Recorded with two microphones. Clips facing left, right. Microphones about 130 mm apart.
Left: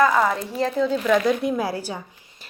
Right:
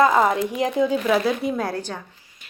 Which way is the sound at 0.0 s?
20° right (ahead or behind).